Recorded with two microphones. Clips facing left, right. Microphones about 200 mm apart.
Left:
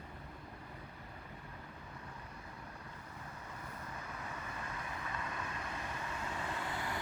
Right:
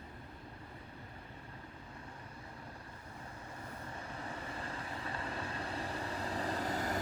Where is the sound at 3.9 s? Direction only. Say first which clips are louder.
Right 3 dB; 30° right (ahead or behind).